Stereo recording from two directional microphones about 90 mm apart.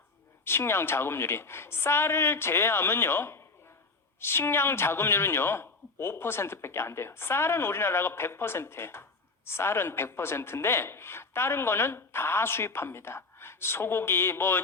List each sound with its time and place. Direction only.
0.4 s speech: 25° left (ahead or behind)